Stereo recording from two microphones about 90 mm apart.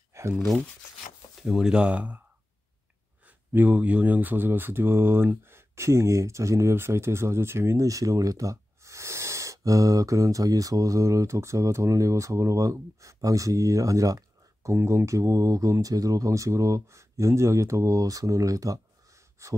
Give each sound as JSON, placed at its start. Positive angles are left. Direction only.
{"t": 0.1, "sound": "a sound", "side_deg": -35}
{"t": 1.3, "sound": "speech", "side_deg": 0}
{"t": 3.3, "sound": "speech", "side_deg": -20}